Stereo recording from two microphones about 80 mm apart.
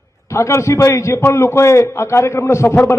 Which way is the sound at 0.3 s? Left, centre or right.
Left.